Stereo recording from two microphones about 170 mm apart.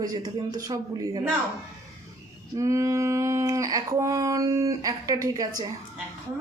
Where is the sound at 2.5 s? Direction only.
20° right (ahead or behind).